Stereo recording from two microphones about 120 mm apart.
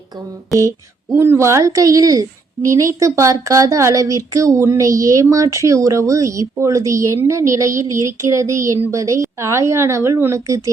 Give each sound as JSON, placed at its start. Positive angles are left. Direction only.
{"t": 1.1, "sound": "a woman's voice", "side_deg": -20}